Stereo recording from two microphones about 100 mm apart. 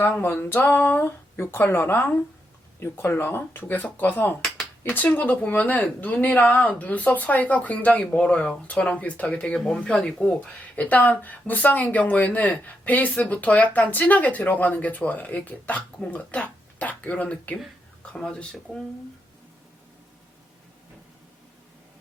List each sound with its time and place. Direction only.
0.0 s speech: 20° left (ahead or behind)